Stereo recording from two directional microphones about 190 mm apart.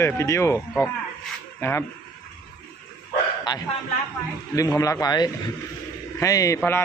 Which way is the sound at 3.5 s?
20° left (ahead or behind).